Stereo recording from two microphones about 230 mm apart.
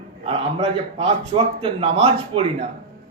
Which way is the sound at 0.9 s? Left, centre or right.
Right.